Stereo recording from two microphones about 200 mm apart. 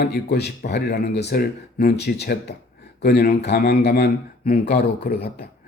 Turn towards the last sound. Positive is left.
turn(degrees=50)  # may be behind; listen again after turning